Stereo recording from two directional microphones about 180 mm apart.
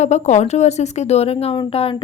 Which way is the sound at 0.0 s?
40° left (ahead or behind).